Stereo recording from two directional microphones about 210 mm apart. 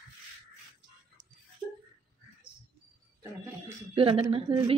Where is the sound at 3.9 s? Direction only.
25° right (ahead or behind).